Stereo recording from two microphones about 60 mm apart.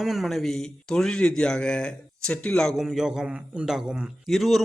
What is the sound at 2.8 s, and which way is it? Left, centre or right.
A man's voice, centre.